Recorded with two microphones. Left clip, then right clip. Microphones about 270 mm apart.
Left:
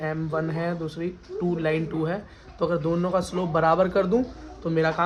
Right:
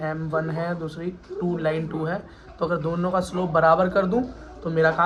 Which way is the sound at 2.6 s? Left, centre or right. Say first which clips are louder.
Even; left.